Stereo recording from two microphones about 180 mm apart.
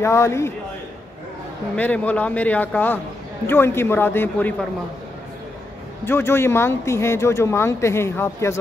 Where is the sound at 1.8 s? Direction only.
10° left (ahead or behind).